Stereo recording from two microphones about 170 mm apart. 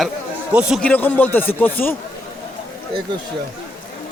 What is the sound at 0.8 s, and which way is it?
A man's voice, 10° left (ahead or behind).